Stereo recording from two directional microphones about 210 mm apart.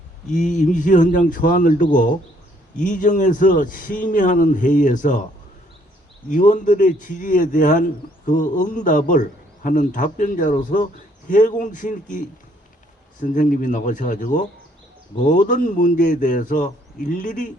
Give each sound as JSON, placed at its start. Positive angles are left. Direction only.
{"t": 0.3, "sound": "speech", "side_deg": 35}
{"t": 6.2, "sound": "speech", "side_deg": 35}
{"t": 13.3, "sound": "speech", "side_deg": 40}